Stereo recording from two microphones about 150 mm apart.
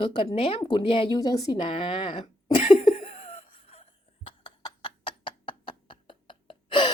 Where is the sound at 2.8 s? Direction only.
40° left (ahead or behind).